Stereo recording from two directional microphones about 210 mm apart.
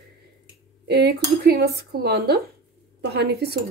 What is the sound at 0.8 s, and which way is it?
A woman's voice, 50° right (ahead or behind).